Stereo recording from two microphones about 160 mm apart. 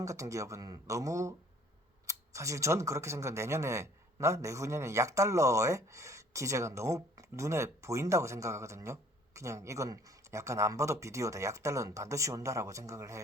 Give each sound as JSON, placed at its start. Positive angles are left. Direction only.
{"t": 0.0, "sound": "speech", "side_deg": -20}